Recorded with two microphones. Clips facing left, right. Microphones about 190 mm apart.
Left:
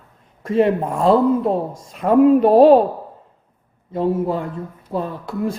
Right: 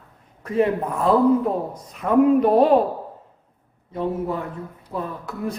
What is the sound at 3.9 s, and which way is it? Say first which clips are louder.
A woman's voice: left 5 dB; 30° left (ahead or behind).